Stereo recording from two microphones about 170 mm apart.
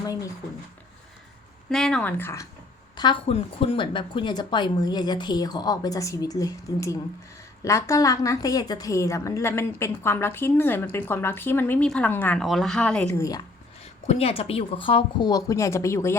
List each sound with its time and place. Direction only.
1.7 s a woman's voice: 5° left (ahead or behind)
2.9 s a woman's voice: 25° left (ahead or behind); by 13.1 s 5° left (ahead or behind)
13.1 s a woman's voice: 20° left (ahead or behind)
14.1 s a woman's voice: 35° left (ahead or behind); by 16.1 s 15° left (ahead or behind)